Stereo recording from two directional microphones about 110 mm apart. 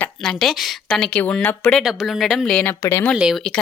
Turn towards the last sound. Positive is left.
turn(degrees=-5)  # may be behind; listen again after turning